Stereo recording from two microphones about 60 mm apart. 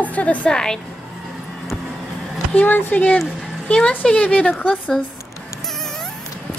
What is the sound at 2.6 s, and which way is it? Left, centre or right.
A woman's voice, left.